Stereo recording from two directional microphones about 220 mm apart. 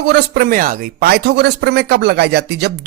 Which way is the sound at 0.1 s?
45° right (ahead or behind).